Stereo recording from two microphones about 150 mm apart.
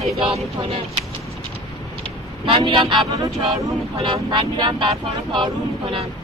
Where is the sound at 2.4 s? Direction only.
35° right (ahead or behind).